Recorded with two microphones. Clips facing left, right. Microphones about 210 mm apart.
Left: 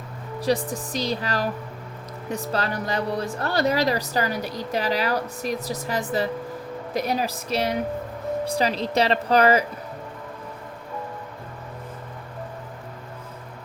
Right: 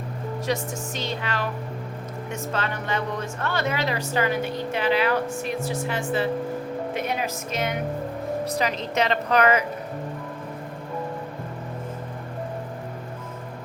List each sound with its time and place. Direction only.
0.4 s a woman's voice: 35° left (ahead or behind)